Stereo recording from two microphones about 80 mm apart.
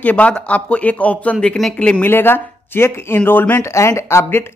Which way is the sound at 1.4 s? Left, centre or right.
Centre.